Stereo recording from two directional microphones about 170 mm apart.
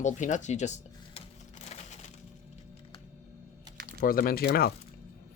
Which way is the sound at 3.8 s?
55° left (ahead or behind).